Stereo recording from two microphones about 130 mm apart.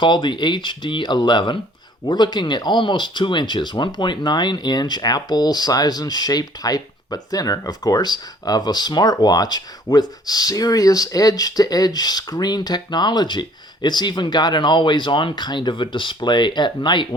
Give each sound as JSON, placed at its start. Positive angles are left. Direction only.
{"t": 0.0, "sound": "speech", "side_deg": 35}